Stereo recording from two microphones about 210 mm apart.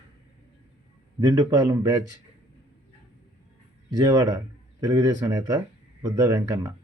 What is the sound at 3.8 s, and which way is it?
Speech, 15° right (ahead or behind).